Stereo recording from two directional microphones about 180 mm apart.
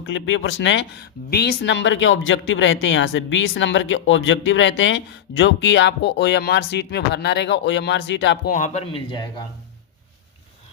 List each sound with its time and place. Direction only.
0.0 s speech: 90° left
1.3 s speech: 60° left (ahead or behind)
8.4 s speech: 45° left (ahead or behind); by 9.2 s 30° left (ahead or behind)